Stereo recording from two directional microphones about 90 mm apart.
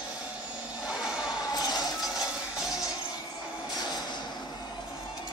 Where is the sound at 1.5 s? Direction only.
45° left (ahead or behind).